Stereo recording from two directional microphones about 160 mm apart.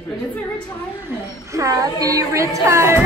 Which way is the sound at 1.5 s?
20° right (ahead or behind).